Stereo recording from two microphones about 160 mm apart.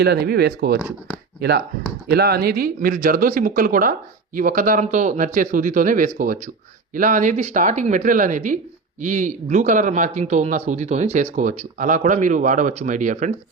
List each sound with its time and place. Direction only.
0.0 s speech: 90° right; by 13.3 s 50° right (ahead or behind)